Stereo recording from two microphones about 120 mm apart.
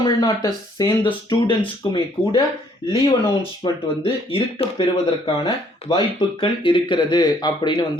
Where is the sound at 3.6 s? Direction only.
40° left (ahead or behind).